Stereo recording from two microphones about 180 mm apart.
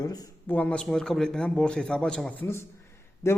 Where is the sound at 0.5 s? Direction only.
5° left (ahead or behind).